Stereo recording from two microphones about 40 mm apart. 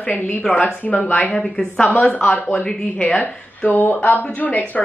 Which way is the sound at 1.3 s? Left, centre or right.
Centre.